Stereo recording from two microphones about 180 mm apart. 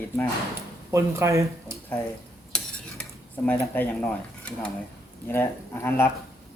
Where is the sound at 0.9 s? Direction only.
15° right (ahead or behind).